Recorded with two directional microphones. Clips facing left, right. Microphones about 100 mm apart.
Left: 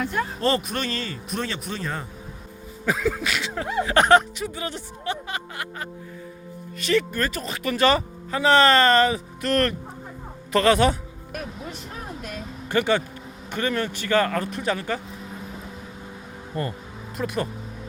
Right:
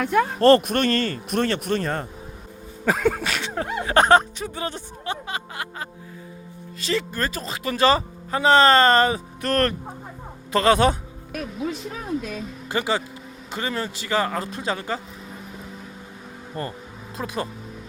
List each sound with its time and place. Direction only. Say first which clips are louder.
0.0 s speech: right 6 dB; 80° right
0.3 s speech: right 10 dB; 55° right (ahead or behind)
3.0 s a sound: right 4 dB; 60° right (ahead or behind)
3.2 s speech: right 1 dB; 40° right (ahead or behind)
5.2 s speech: right 1 dB; 25° right (ahead or behind)
10.5 s speech: right 1 dB; 30° right (ahead or behind)
12.6 s speech: left 3 dB; 20° right (ahead or behind)
16.5 s speech: left 2 dB; 30° right (ahead or behind)